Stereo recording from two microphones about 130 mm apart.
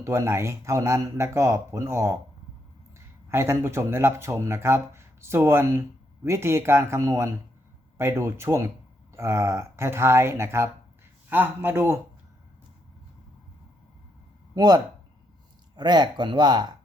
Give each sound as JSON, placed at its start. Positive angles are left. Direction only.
{"t": 0.0, "sound": "speech", "side_deg": -20}
{"t": 3.2, "sound": "a man's voice", "side_deg": -20}
{"t": 14.5, "sound": "speech", "side_deg": -30}